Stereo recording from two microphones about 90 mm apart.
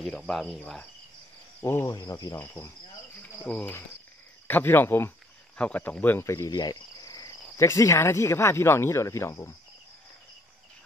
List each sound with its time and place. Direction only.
0.3 s cricket: 5° left (ahead or behind)
1.6 s cricket: 25° left (ahead or behind)
1.9 s cricket: 40° left (ahead or behind)
2.3 s speech: 30° left (ahead or behind)
3.2 s cricket: 15° left (ahead or behind)
4.5 s speech: 20° left (ahead or behind)
6.6 s cricket: 45° left (ahead or behind)